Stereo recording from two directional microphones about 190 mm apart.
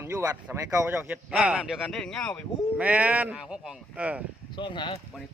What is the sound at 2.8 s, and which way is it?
Speech, 5° right (ahead or behind).